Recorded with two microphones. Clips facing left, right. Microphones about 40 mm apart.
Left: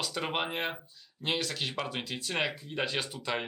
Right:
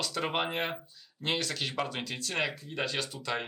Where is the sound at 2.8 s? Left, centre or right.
Left.